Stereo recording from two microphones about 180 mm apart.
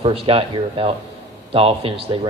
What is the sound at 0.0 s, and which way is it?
A man's voice, 30° right (ahead or behind).